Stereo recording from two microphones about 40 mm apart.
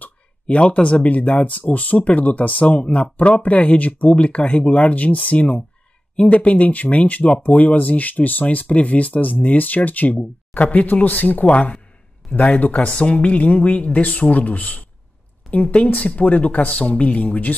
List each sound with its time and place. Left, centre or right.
0.0 s speech: left
2.8 s speech: left